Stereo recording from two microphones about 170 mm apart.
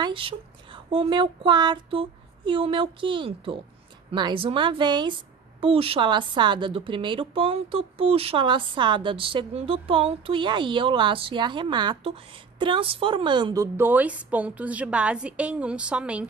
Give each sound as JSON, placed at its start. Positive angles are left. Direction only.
{"t": 0.0, "sound": "a woman's voice", "side_deg": -30}